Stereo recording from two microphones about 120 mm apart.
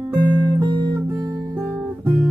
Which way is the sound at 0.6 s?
25° right (ahead or behind).